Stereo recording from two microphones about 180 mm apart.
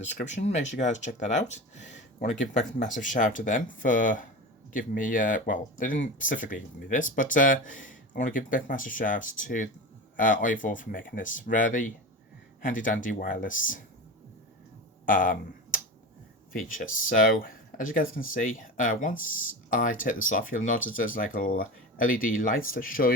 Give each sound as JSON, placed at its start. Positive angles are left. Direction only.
{"t": 0.1, "sound": "speech", "side_deg": 40}
{"t": 15.0, "sound": "computer keyboard", "side_deg": 50}
{"t": 16.5, "sound": "speech", "side_deg": 50}